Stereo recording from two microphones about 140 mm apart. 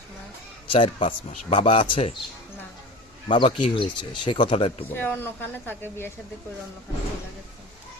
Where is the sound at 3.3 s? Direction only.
35° left (ahead or behind).